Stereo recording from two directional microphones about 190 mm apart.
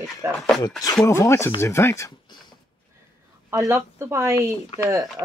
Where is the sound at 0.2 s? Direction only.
15° right (ahead or behind).